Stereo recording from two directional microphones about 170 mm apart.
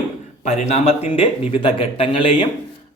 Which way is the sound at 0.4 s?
40° left (ahead or behind).